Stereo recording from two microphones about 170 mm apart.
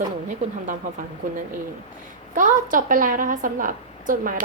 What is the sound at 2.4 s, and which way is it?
A woman's voice, 50° right (ahead or behind).